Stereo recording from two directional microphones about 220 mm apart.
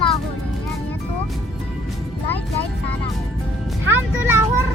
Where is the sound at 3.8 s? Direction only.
10° right (ahead or behind).